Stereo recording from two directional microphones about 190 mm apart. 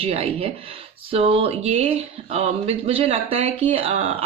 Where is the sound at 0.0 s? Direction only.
30° right (ahead or behind).